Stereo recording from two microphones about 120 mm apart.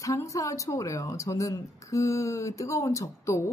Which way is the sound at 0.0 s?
25° left (ahead or behind).